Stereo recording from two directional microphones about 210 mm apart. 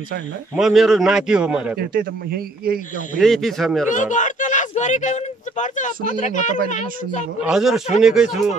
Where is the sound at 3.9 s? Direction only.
35° left (ahead or behind).